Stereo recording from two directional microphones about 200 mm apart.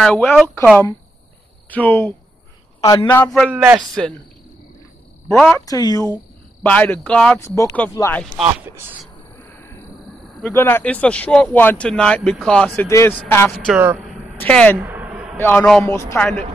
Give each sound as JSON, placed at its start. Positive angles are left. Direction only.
{"t": 0.0, "sound": "speech", "side_deg": 0}
{"t": 1.7, "sound": "speech", "side_deg": 10}
{"t": 3.3, "sound": "speech", "side_deg": 0}
{"t": 5.3, "sound": "speech", "side_deg": 5}
{"t": 5.7, "sound": "speech", "side_deg": 20}
{"t": 6.6, "sound": "speech", "side_deg": 5}
{"t": 7.3, "sound": "speech", "side_deg": 15}
{"t": 8.2, "sound": "speech", "side_deg": -5}
{"t": 10.4, "sound": "speech", "side_deg": 10}
{"t": 13.5, "sound": "a man's voice", "side_deg": -5}
{"t": 14.4, "sound": "speech", "side_deg": 5}
{"t": 14.8, "sound": "a sound", "side_deg": -10}
{"t": 15.3, "sound": "speech", "side_deg": 10}